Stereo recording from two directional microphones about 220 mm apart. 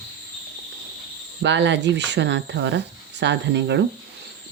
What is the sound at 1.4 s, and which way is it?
Speech, 55° right (ahead or behind).